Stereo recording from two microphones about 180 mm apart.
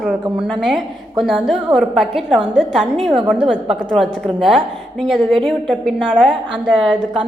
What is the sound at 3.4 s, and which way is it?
Speech, 30° right (ahead or behind).